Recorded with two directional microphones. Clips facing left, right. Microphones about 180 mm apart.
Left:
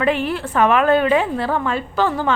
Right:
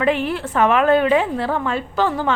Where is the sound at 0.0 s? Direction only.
20° right (ahead or behind).